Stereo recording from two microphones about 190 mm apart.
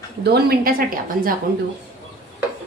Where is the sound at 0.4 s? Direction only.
50° right (ahead or behind).